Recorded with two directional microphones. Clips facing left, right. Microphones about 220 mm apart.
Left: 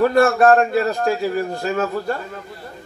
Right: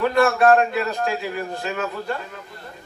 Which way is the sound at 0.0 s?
45° left (ahead or behind).